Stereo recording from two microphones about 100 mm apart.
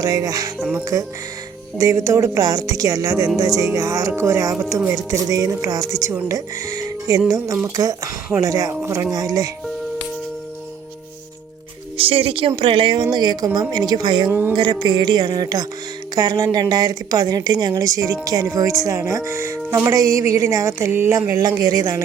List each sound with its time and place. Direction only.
0.0 s a woman's voice: 40° right (ahead or behind)
2.4 s a woman's voice: 40° right (ahead or behind)
8.7 s speech: 25° right (ahead or behind)
9.1 s a woman's voice: 40° right (ahead or behind)
11.9 s speech: 70° right (ahead or behind); by 14.3 s 50° right (ahead or behind)
14.3 s speech: 20° right (ahead or behind)
14.5 s a woman's voice: 55° right (ahead or behind); by 22.0 s 35° right (ahead or behind)